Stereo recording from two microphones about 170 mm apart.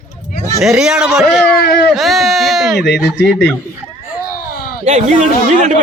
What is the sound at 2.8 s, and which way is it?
Speech, 80° left.